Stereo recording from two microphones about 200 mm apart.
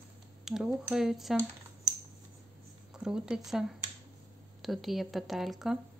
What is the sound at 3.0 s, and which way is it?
Speech, 5° right (ahead or behind).